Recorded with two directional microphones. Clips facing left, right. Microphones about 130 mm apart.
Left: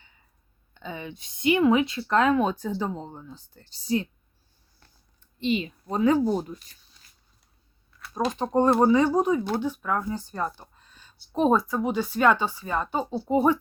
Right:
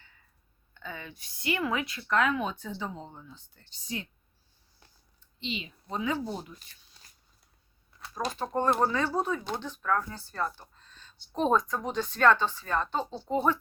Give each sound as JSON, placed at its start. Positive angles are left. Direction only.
{"t": 0.7, "sound": "speech", "side_deg": 20}
{"t": 5.4, "sound": "a woman's voice", "side_deg": 50}
{"t": 8.1, "sound": "speech", "side_deg": 20}